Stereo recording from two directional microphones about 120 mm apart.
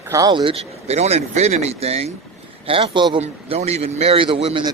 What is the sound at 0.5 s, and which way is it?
Speech, 60° right (ahead or behind).